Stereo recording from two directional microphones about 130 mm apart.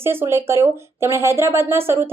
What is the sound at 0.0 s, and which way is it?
A woman's voice, 20° right (ahead or behind).